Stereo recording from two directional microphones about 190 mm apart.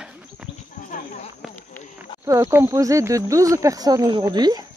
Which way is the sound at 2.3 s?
15° right (ahead or behind).